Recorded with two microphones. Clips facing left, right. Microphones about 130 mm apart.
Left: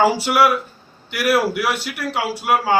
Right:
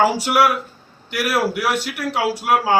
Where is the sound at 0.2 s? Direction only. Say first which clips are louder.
Left 1 dB; 5° right (ahead or behind).